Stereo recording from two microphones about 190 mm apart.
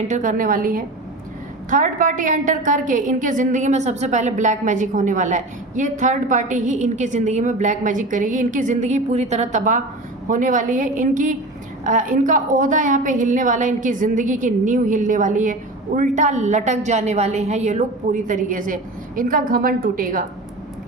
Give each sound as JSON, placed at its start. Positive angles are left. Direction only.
{"t": 0.1, "sound": "a woman's voice", "side_deg": -40}